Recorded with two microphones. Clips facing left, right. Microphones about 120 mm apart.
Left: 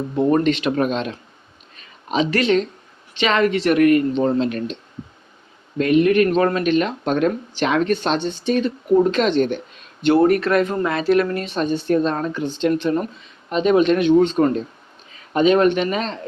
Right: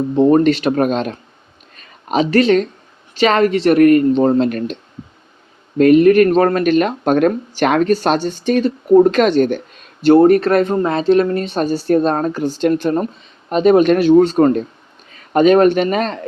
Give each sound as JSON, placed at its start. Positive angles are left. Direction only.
{"t": 0.2, "sound": "speech", "side_deg": -30}
{"t": 0.4, "sound": "speech", "side_deg": -40}
{"t": 1.7, "sound": "a sound", "side_deg": -50}
{"t": 2.3, "sound": "a woman's voice", "side_deg": -35}
{"t": 7.9, "sound": "speech", "side_deg": -40}
{"t": 10.0, "sound": "a woman's voice", "side_deg": -35}